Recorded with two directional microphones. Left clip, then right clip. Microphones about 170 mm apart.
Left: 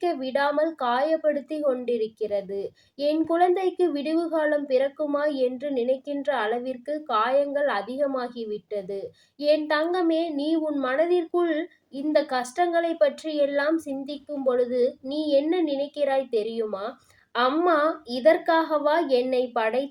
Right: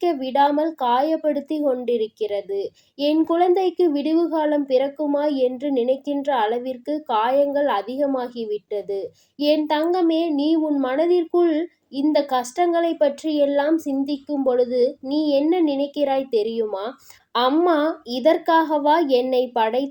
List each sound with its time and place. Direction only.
0.0 s a woman's voice: 35° right (ahead or behind)